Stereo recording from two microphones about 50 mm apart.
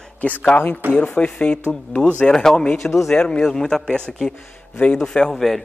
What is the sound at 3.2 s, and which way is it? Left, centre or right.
Speech, centre.